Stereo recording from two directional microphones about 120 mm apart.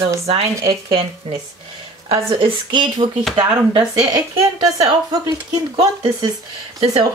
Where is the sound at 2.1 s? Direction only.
45° right (ahead or behind).